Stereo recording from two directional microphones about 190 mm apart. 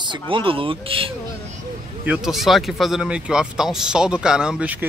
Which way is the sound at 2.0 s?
5° right (ahead or behind).